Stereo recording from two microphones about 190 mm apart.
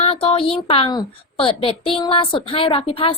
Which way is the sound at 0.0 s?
30° left (ahead or behind).